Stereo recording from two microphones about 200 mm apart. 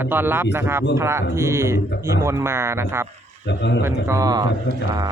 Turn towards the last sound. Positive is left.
turn(degrees=-20)  # may be behind; listen again after turning